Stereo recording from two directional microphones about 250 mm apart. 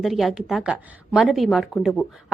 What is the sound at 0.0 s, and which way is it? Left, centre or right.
A woman's voice, centre.